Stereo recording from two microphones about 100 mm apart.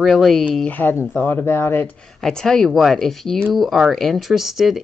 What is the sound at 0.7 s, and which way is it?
Speech, 20° left (ahead or behind).